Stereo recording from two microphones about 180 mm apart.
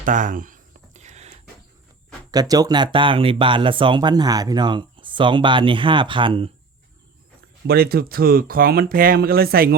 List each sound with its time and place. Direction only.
0.0 s a sound: 45° right (ahead or behind)
2.3 s speech: 20° right (ahead or behind)
7.7 s speech: 60° right (ahead or behind)